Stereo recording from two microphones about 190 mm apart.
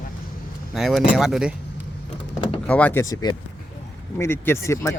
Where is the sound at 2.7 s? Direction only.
5° left (ahead or behind).